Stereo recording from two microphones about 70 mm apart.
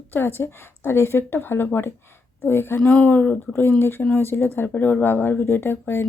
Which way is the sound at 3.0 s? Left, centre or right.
Left.